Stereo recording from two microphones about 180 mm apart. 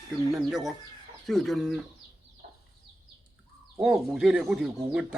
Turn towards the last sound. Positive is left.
turn(degrees=-5)  # may be behind; listen again after turning